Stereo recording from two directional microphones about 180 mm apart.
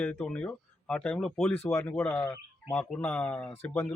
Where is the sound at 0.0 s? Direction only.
5° left (ahead or behind).